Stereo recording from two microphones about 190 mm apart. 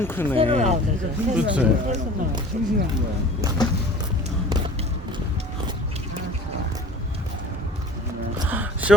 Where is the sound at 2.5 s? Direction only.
50° right (ahead or behind).